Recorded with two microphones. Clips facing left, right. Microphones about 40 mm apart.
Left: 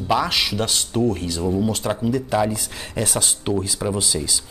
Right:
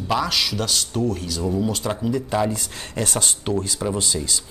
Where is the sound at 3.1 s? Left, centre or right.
Centre.